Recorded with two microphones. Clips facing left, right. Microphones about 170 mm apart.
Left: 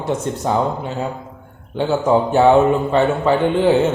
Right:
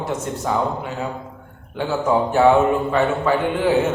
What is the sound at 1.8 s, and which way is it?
Speech, 25° left (ahead or behind).